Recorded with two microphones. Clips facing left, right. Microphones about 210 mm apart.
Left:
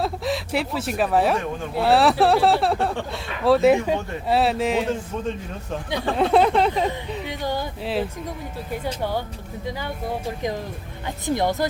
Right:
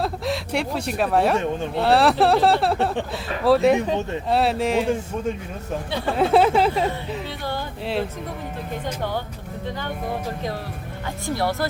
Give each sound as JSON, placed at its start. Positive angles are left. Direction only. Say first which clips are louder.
{"t": 0.0, "sound": "speech", "louder": "even", "side_deg": 0}
{"t": 6.1, "sound": "speech", "louder": "right 1 dB", "side_deg": 0}
{"t": 7.3, "sound": "speech", "louder": "left 2 dB", "side_deg": 15}
{"t": 11.3, "sound": "speech", "louder": "left 1 dB", "side_deg": 20}